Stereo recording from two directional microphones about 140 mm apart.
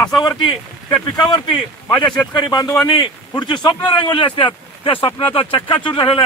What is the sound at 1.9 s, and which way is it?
Speech, 5° left (ahead or behind).